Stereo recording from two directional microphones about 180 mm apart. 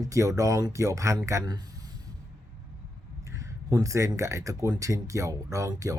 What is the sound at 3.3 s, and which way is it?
Speech, 20° right (ahead or behind).